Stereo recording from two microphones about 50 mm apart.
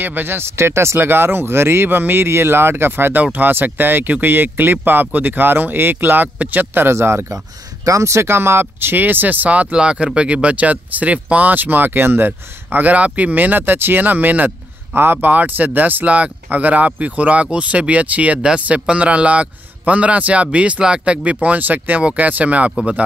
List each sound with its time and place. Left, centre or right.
0.0 s speech: right
3.2 s speech: right
7.0 s speech: right
7.9 s speech: right
8.4 s speech: right
8.9 s speech: right
15.0 s speech: right
15.3 s a man's voice: right